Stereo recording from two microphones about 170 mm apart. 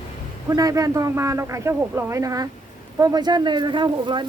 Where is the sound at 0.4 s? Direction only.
20° right (ahead or behind).